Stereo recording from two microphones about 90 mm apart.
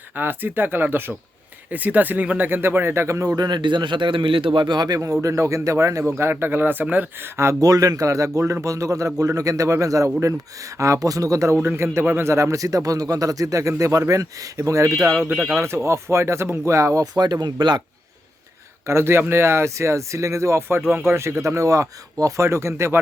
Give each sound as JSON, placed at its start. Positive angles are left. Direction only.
{"t": 0.2, "sound": "speech", "side_deg": -20}
{"t": 3.3, "sound": "a man's voice", "side_deg": -50}
{"t": 5.2, "sound": "a man's voice", "side_deg": -35}
{"t": 7.6, "sound": "a man's voice", "side_deg": -40}
{"t": 18.9, "sound": "a man's voice", "side_deg": -30}